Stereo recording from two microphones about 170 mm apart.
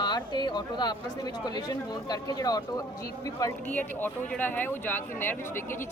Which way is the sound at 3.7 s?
10° left (ahead or behind).